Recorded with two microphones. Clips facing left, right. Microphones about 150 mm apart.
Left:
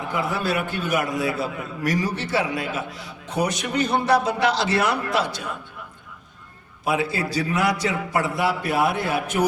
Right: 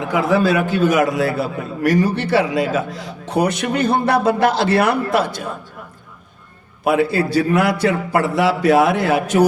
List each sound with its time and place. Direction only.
0.1 s a man's voice: 90° right
1.4 s a man's voice: 65° right (ahead or behind)
6.8 s a man's voice: 60° right (ahead or behind); by 9.5 s 90° right